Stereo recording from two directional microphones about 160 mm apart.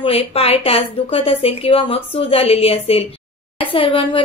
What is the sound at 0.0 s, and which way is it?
A woman's voice, 35° left (ahead or behind).